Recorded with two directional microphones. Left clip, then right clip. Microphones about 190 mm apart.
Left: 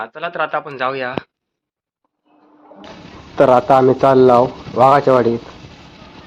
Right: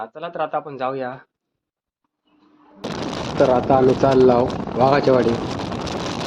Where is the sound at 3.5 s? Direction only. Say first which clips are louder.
Left 6 dB; 5° left (ahead or behind).